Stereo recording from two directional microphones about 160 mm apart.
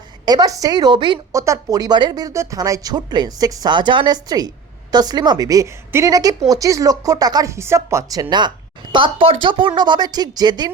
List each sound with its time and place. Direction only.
0.3 s a woman's voice: 25° right (ahead or behind)